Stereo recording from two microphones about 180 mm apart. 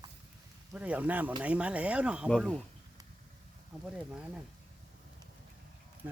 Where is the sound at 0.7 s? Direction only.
10° right (ahead or behind).